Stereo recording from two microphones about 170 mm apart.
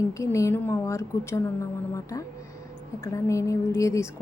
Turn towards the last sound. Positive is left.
turn(degrees=15)  # may be behind; listen again after turning